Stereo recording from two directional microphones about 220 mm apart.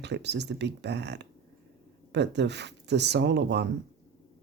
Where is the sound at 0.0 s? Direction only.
50° right (ahead or behind).